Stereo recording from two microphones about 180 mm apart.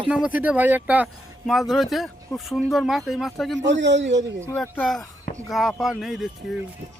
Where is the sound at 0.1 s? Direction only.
5° right (ahead or behind).